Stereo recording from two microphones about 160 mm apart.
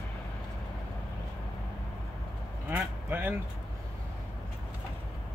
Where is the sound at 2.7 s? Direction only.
10° right (ahead or behind).